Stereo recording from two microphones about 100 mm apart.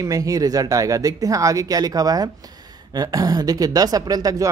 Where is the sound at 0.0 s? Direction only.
35° right (ahead or behind).